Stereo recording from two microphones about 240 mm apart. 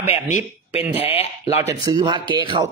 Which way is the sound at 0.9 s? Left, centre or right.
Left.